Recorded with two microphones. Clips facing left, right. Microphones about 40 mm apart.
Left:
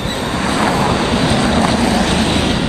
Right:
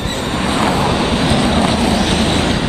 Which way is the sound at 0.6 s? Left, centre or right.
Centre.